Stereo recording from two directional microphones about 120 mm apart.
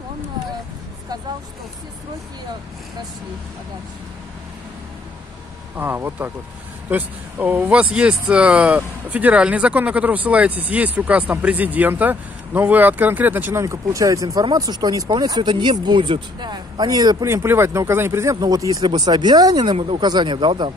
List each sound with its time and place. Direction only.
5.8 s speech: 15° right (ahead or behind); by 17.3 s 35° right (ahead or behind)
17.3 s speech: 20° right (ahead or behind); by 20.7 s 40° right (ahead or behind)